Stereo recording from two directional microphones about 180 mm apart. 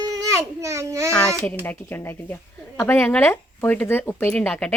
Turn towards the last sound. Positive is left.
turn(degrees=5)  # may be behind; listen again after turning